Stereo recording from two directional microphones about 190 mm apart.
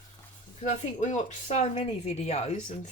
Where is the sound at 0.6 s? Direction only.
40° left (ahead or behind).